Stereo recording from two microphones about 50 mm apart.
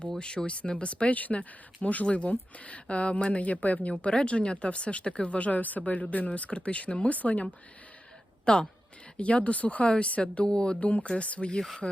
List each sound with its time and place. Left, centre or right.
0.2 s speech: centre
8.5 s speech: centre
11.8 s speech: centre